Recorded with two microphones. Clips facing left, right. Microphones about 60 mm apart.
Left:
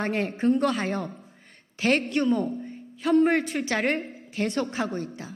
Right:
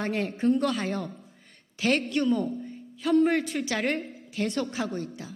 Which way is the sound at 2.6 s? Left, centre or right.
Left.